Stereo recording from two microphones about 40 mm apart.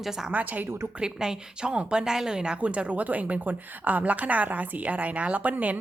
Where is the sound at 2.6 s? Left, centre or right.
Right.